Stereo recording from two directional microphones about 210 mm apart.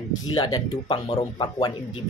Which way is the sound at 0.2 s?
20° left (ahead or behind).